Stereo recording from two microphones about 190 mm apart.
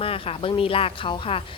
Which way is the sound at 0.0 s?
30° left (ahead or behind).